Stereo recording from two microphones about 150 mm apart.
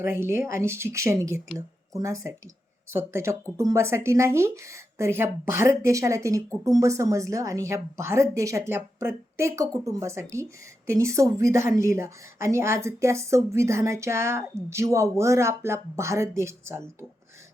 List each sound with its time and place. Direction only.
0.0 s a woman's voice: 15° right (ahead or behind)